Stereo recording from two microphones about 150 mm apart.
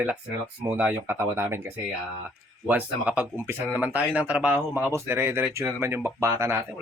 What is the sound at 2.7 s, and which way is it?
Speech, 10° right (ahead or behind).